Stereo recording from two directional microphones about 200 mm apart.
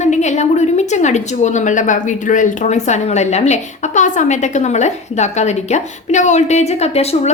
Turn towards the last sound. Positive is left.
turn(degrees=30)  # may be behind; listen again after turning